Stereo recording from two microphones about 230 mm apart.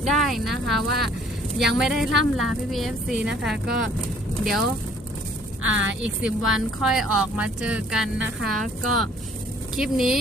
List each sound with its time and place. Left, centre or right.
0.1 s speech: centre
5.6 s speech: right
6.0 s speech: centre